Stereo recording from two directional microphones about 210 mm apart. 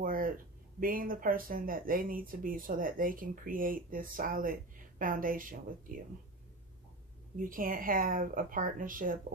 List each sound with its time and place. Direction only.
0.0 s a sound: 40° right (ahead or behind)
0.7 s speech: 40° right (ahead or behind)
7.3 s speech: 40° right (ahead or behind)